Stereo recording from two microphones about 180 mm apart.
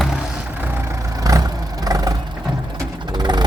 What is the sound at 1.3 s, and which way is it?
Vehicle, 20° right (ahead or behind).